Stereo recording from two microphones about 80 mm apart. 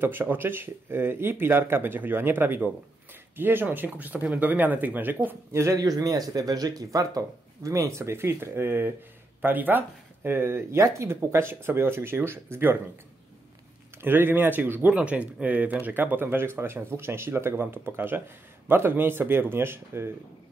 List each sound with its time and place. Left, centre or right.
0.0 s speech: right
5.5 s speech: right
5.8 s speech: right
14.0 s speech: right